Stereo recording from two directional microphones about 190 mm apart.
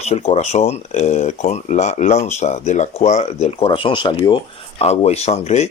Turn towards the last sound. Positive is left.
turn(degrees=35)  # may be behind; listen again after turning